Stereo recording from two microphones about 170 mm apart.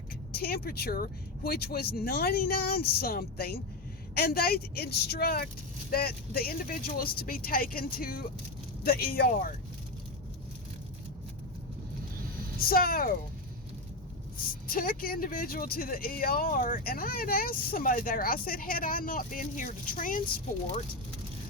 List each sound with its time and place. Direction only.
0.3 s speech: 65° left (ahead or behind)
12.5 s speech: 60° left (ahead or behind)
14.7 s speech: 55° left (ahead or behind)